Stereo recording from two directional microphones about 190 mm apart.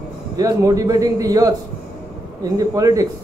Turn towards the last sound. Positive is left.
turn(degrees=-20)  # may be behind; listen again after turning